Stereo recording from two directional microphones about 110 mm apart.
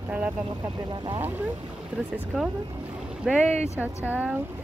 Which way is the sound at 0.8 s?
45° right (ahead or behind).